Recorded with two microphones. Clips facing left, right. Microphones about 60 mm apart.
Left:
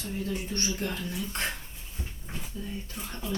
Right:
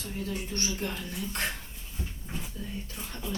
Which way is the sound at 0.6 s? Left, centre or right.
Left.